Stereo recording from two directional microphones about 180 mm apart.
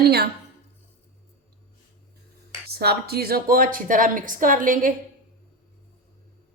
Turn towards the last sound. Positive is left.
turn(degrees=-50)  # may be behind; listen again after turning